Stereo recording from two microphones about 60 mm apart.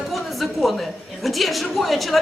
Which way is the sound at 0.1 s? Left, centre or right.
Centre.